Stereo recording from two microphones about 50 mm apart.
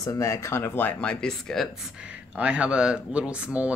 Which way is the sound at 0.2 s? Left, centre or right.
Left.